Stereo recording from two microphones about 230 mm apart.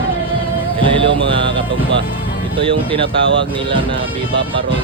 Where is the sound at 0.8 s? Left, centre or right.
Right.